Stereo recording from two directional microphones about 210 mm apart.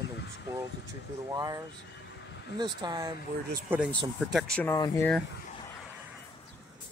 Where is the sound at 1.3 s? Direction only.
15° right (ahead or behind).